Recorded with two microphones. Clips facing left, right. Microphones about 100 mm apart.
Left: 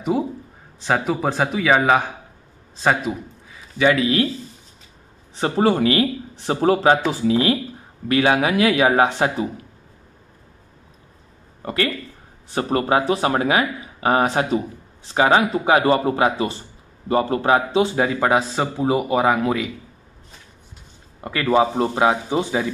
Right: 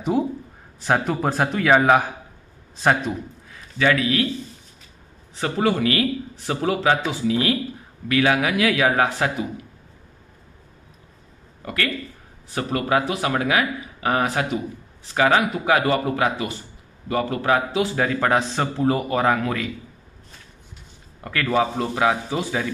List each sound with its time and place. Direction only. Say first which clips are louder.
0.1 s a man's voice: right 1 dB; centre (ahead or behind)
3.7 s speech: left 3 dB; 20° left (ahead or behind)
5.3 s speech: left 3 dB; 30° left (ahead or behind)
11.6 s a man's voice: left 3 dB; 25° left (ahead or behind)
21.2 s speech: left 4 dB; 20° left (ahead or behind)